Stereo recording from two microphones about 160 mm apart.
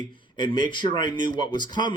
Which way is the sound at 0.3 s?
30° left (ahead or behind).